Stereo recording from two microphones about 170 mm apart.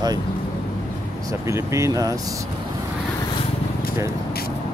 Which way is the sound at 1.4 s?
15° right (ahead or behind).